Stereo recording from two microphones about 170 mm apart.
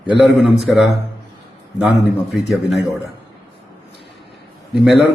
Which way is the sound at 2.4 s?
Centre (ahead or behind).